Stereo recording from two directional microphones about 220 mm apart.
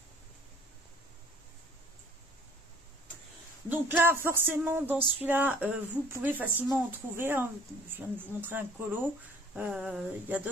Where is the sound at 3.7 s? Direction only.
10° right (ahead or behind).